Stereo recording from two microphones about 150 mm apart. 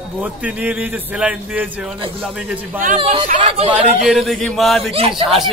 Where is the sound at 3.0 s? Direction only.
35° right (ahead or behind).